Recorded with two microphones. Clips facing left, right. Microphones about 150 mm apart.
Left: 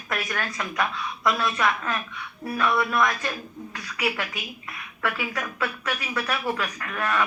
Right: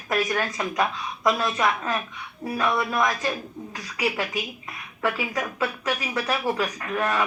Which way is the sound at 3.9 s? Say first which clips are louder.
Right 2 dB; 25° right (ahead or behind).